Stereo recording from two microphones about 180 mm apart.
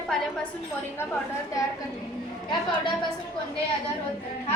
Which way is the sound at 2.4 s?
25° left (ahead or behind).